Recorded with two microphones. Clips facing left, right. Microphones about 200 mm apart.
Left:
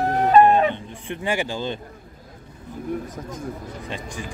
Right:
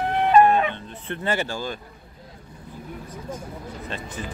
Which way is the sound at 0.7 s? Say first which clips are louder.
Left 2 dB; 15° left (ahead or behind).